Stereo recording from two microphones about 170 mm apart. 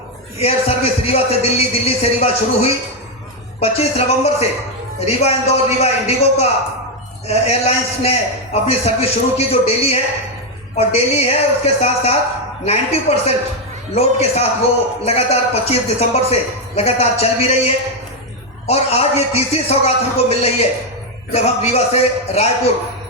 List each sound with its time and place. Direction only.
0.3 s a man's voice: 35° left (ahead or behind)